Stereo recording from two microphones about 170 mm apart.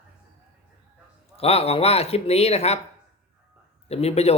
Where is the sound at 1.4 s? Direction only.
35° left (ahead or behind).